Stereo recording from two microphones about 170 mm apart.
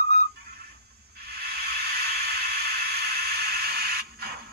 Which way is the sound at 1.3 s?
65° right (ahead or behind).